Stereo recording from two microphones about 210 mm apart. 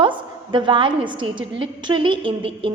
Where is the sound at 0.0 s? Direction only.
25° right (ahead or behind).